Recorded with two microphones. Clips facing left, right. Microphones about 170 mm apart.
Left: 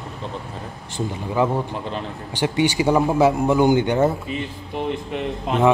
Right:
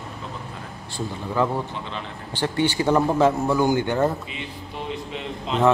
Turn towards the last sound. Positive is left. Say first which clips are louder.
# left 3 dB
turn(degrees=55)  # may be behind; listen again after turning